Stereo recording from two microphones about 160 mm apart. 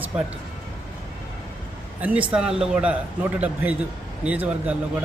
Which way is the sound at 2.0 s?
10° right (ahead or behind).